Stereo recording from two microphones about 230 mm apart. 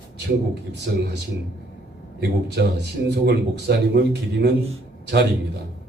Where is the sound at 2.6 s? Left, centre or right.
Right.